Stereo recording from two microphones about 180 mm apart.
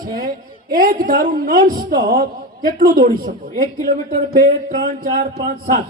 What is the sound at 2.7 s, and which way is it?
Speech, 55° right (ahead or behind).